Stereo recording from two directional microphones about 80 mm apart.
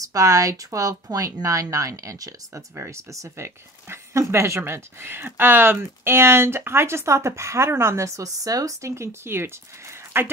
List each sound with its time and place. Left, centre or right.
0.0 s speech: right